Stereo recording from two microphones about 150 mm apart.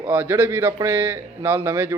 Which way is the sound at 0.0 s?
15° right (ahead or behind).